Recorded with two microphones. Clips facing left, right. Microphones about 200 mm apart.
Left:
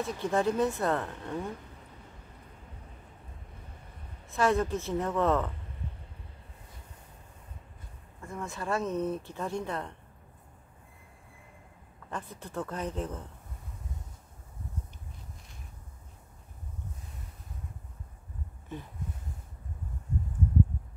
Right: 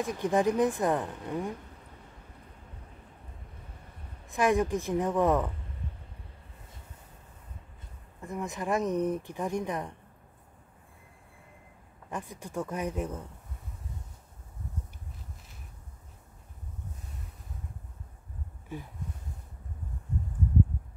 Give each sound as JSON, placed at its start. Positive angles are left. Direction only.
{"t": 0.0, "sound": "speech", "side_deg": -15}
{"t": 4.3, "sound": "speech", "side_deg": -15}
{"t": 8.2, "sound": "speech", "side_deg": -15}
{"t": 12.1, "sound": "speech", "side_deg": -15}
{"t": 18.7, "sound": "speech", "side_deg": -10}